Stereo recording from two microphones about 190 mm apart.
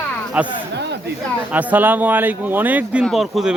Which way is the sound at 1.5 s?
10° right (ahead or behind).